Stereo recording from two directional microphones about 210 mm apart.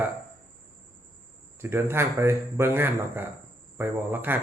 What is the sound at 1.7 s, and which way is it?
A man's voice, 10° right (ahead or behind).